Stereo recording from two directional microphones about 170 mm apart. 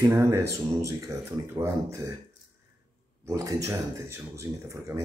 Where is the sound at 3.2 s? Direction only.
20° right (ahead or behind).